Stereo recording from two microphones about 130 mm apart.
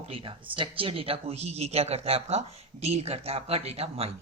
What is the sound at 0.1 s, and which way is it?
Speech, 45° right (ahead or behind).